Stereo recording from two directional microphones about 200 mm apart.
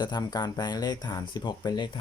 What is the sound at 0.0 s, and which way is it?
Speech, 20° left (ahead or behind).